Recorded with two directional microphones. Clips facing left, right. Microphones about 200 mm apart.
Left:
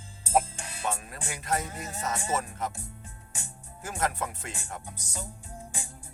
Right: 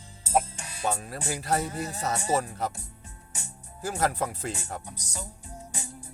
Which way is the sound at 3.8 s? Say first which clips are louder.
Right 4 dB; 35° right (ahead or behind).